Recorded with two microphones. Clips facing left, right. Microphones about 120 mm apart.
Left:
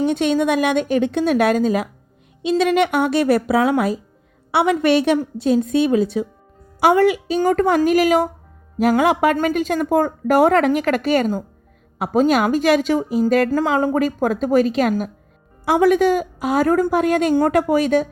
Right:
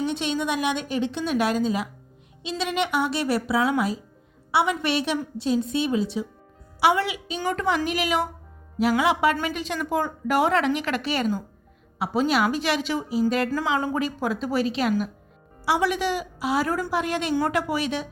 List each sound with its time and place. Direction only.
0.0 s speech: 55° left (ahead or behind)